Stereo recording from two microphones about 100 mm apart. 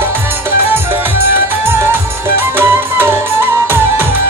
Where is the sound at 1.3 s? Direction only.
20° right (ahead or behind).